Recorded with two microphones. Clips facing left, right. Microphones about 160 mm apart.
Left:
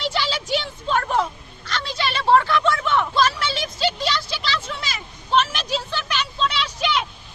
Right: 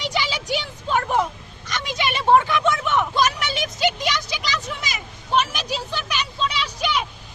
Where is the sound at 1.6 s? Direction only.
15° right (ahead or behind).